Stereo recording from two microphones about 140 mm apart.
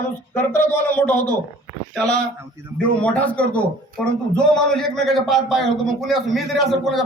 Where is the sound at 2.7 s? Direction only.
10° left (ahead or behind).